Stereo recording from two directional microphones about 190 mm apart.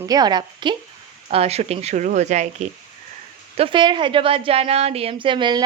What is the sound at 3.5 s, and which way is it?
A woman's voice, 25° right (ahead or behind).